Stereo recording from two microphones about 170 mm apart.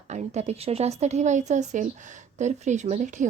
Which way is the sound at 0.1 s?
40° right (ahead or behind).